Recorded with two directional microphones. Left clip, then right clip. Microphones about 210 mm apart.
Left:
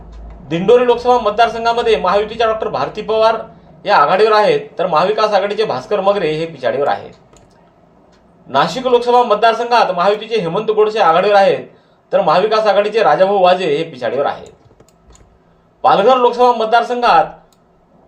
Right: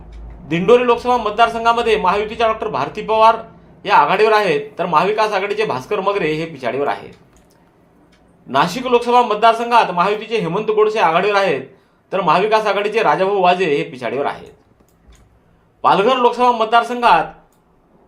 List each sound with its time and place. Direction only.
0.4 s speech: 25° right (ahead or behind)
8.4 s speech: 25° right (ahead or behind)
15.8 s speech: 25° right (ahead or behind)